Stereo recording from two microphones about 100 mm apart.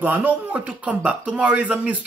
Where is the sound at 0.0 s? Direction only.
15° right (ahead or behind).